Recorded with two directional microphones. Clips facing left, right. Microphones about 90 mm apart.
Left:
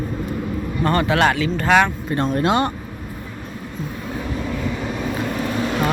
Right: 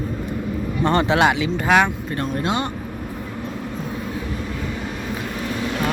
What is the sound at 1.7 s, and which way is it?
Speech, 10° right (ahead or behind).